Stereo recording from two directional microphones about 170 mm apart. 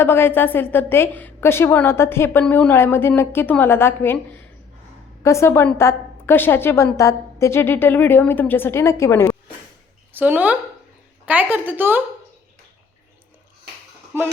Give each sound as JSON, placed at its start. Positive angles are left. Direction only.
{"t": 0.0, "sound": "a woman's voice", "side_deg": 15}
{"t": 5.2, "sound": "a woman's voice", "side_deg": 15}
{"t": 10.1, "sound": "speech", "side_deg": -10}
{"t": 14.1, "sound": "speech", "side_deg": -10}